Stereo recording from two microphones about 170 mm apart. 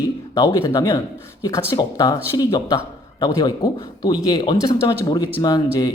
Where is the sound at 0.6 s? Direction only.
25° left (ahead or behind).